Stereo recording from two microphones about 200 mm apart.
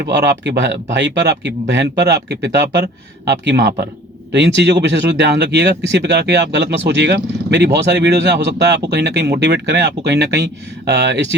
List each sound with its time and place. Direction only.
0.0 s speech: 60° right (ahead or behind)